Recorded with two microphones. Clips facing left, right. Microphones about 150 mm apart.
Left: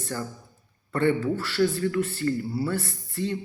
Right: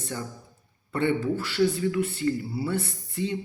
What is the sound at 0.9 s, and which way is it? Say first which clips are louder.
Speech: left 2 dB; 15° right (ahead or behind).